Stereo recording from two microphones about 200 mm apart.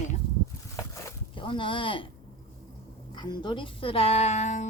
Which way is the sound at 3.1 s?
20° left (ahead or behind).